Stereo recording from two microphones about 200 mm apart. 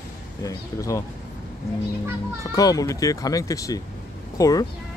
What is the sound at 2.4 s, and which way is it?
Speech, 20° left (ahead or behind).